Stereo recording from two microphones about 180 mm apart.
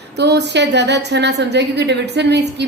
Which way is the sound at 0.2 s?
70° right (ahead or behind).